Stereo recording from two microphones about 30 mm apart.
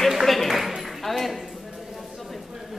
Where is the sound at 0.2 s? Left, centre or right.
Centre.